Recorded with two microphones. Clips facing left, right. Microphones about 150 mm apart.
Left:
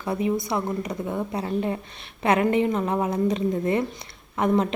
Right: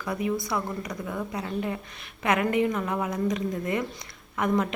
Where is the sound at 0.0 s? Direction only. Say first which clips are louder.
Left 4 dB; 25° left (ahead or behind).